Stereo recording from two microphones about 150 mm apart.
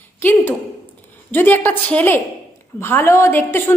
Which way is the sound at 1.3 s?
15° left (ahead or behind).